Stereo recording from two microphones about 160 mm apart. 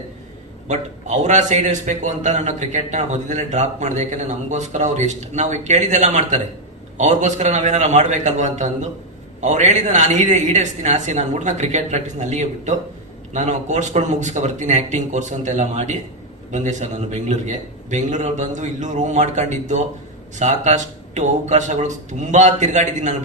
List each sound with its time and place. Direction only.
0.7 s a man's voice: 50° right (ahead or behind)